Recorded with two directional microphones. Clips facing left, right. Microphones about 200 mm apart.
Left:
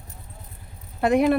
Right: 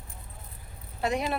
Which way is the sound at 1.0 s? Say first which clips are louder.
Left 10 dB; 55° left (ahead or behind).